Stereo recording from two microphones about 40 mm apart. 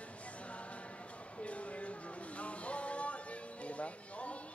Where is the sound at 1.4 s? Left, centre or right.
Left.